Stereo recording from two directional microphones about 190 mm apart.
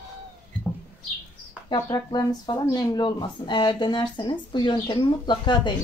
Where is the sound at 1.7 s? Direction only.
20° left (ahead or behind).